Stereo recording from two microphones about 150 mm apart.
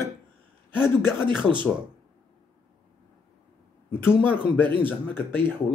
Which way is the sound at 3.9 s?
15° left (ahead or behind).